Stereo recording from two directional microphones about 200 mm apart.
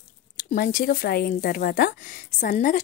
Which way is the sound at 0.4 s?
45° left (ahead or behind).